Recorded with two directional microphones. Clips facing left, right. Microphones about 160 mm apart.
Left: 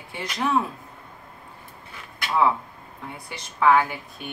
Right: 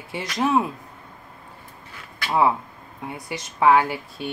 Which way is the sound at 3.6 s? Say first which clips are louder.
Right 2 dB; 25° right (ahead or behind).